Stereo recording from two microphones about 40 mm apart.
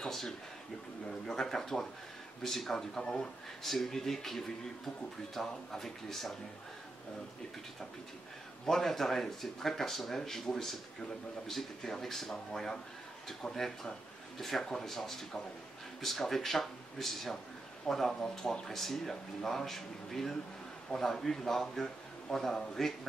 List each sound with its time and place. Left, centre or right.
0.0 s a sound: centre
1.2 s speech: centre
3.0 s speech: left
3.6 s speech: centre
8.6 s speech: centre